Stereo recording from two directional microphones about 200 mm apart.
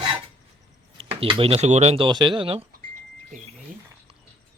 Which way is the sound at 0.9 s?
30° right (ahead or behind).